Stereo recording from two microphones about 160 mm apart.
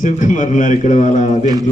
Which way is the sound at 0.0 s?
50° left (ahead or behind).